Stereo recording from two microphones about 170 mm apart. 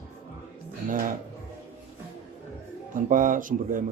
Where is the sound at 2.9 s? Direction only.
50° right (ahead or behind).